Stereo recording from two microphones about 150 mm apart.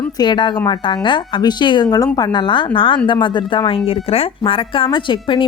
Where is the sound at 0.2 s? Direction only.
30° left (ahead or behind).